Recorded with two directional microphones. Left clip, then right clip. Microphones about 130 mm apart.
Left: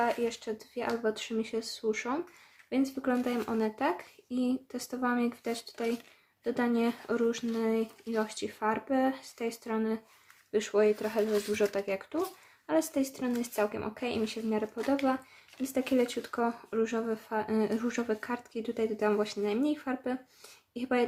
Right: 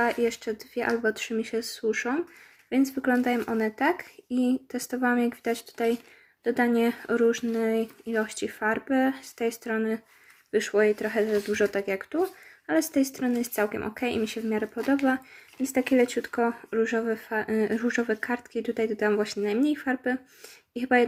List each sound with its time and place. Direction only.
0.0 s speech: 30° right (ahead or behind); by 21.1 s 10° right (ahead or behind)